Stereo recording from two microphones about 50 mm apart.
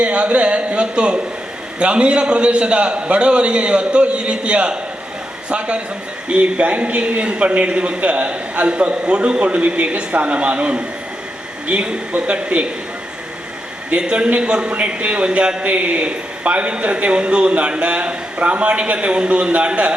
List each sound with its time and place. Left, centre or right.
0.0 s a man's voice: right
13.9 s a man's voice: centre